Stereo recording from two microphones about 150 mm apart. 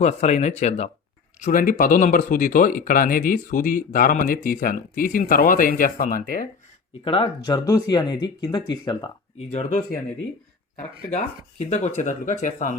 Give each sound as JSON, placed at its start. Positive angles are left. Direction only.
{"t": 0.0, "sound": "speech", "side_deg": 50}
{"t": 1.4, "sound": "speech", "side_deg": 65}
{"t": 7.0, "sound": "speech", "side_deg": 35}
{"t": 9.5, "sound": "speech", "side_deg": 50}